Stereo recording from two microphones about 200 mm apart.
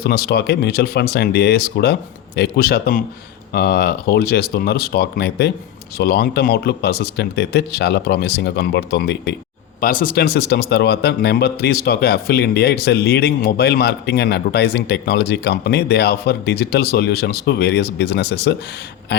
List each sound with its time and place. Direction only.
0.0 s speech: 50° left (ahead or behind)
9.8 s speech: 45° left (ahead or behind)